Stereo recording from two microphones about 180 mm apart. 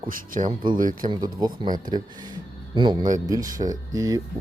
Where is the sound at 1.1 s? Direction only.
20° right (ahead or behind).